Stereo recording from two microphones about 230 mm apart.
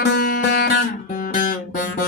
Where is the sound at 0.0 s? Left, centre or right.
Left.